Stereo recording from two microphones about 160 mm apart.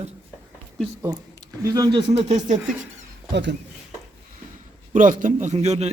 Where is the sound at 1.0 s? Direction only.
20° right (ahead or behind); by 2.6 s 40° right (ahead or behind).